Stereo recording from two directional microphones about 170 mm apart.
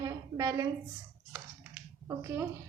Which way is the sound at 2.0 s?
15° right (ahead or behind).